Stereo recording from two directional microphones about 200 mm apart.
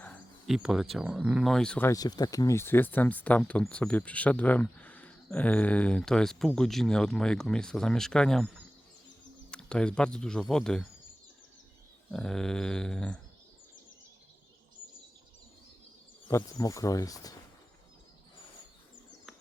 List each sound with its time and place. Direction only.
0.0 s speech: 5° left (ahead or behind)
1.9 s speech: 20° left (ahead or behind); by 10.8 s 5° left (ahead or behind)
12.1 s speech: 5° left (ahead or behind)
16.3 s speech: 15° left (ahead or behind)